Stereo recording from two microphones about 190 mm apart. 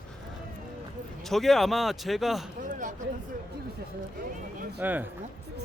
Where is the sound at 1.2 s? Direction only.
Centre (ahead or behind).